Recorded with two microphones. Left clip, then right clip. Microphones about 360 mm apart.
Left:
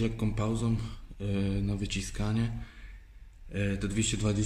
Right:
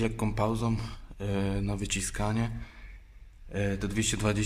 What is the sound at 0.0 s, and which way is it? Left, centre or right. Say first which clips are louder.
A man's voice: right 4 dB; centre.